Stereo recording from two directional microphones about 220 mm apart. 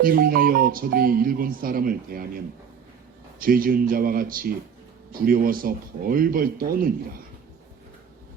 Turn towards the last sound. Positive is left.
turn(degrees=-40)  # may be behind; listen again after turning